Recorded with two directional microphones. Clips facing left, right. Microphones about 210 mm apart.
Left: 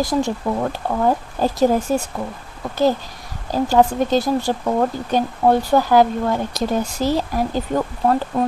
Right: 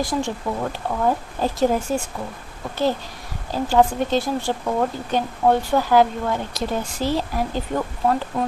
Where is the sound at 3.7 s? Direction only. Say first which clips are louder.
Left 2 dB; 40° left (ahead or behind).